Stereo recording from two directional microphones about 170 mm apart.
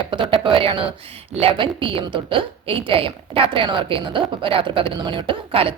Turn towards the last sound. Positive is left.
turn(degrees=-35)  # may be behind; listen again after turning